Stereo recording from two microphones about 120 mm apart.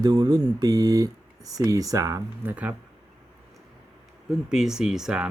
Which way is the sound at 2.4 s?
15° right (ahead or behind).